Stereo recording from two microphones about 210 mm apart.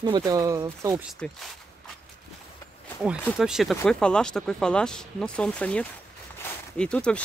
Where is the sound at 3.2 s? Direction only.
Centre (ahead or behind).